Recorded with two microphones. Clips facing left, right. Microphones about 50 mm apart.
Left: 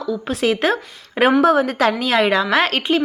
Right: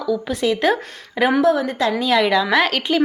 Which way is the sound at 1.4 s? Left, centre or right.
Left.